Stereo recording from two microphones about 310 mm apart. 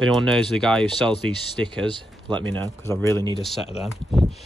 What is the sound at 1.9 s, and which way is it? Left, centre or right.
Speech, centre.